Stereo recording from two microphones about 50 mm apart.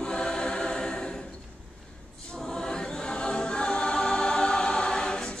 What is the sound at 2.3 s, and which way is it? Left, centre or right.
Choir, centre.